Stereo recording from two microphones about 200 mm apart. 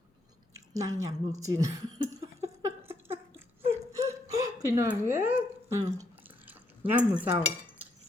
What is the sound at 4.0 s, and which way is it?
Hiccup, 15° right (ahead or behind).